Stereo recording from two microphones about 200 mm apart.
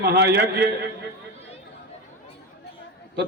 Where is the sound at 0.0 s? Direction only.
55° right (ahead or behind).